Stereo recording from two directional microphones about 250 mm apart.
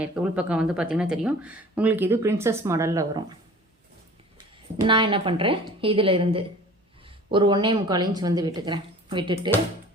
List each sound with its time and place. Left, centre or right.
0.0 s speech: centre
4.9 s a woman's voice: centre